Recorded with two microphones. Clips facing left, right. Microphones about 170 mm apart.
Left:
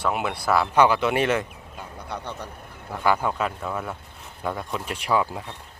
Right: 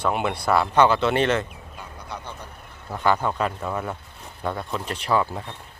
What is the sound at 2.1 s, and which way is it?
Speech, 55° left (ahead or behind).